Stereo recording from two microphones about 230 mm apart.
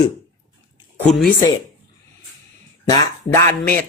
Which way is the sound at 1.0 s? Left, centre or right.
Centre.